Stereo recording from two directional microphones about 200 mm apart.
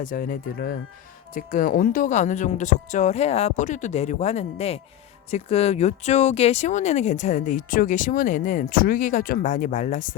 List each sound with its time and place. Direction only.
0.0 s speech: 45° left (ahead or behind)